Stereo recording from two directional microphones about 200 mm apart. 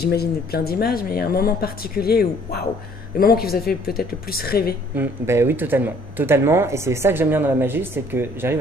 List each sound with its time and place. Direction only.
0.0 s speech: 55° left (ahead or behind)
4.9 s speech: 10° right (ahead or behind)